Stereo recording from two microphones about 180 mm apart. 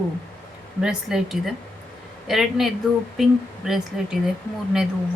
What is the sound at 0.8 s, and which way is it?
A woman's voice, 5° right (ahead or behind).